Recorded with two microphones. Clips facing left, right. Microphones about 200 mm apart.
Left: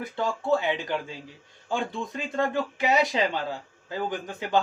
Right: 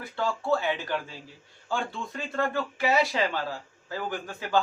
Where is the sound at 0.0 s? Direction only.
20° left (ahead or behind).